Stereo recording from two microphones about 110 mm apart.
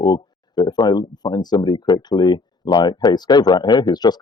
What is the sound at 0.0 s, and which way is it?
Speech, 35° left (ahead or behind).